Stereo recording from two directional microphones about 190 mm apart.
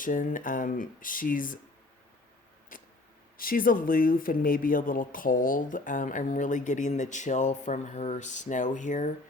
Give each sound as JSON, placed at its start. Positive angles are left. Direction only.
{"t": 0.0, "sound": "speech", "side_deg": 45}
{"t": 3.3, "sound": "speech", "side_deg": 45}